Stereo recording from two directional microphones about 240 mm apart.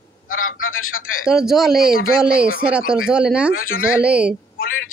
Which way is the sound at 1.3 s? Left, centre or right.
Centre.